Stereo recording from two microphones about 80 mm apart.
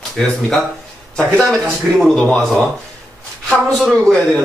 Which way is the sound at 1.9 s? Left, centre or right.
Centre.